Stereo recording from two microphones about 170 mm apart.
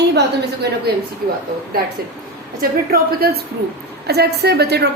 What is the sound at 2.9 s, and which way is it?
A woman's voice, 65° right (ahead or behind).